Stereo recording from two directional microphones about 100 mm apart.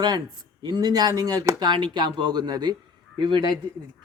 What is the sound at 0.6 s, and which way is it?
Speech, 45° right (ahead or behind).